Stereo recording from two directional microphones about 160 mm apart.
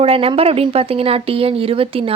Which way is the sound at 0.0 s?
35° right (ahead or behind).